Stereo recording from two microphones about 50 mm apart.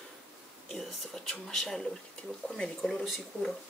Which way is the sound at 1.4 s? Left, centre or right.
Centre.